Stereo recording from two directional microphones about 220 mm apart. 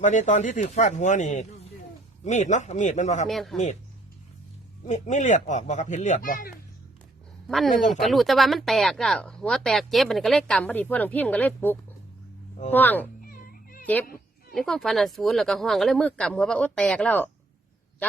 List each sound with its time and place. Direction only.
0.0 s speech: 35° left (ahead or behind)
3.2 s speech: centre (ahead or behind)
4.9 s speech: 35° left (ahead or behind)
7.4 s speech: centre (ahead or behind)
13.2 s cat: 40° left (ahead or behind)
13.8 s speech: 5° left (ahead or behind)